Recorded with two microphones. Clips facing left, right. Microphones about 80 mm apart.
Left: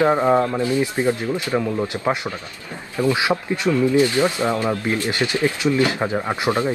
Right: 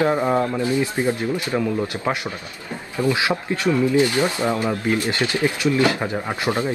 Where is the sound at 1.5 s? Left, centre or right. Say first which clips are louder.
Left 1 dB; centre.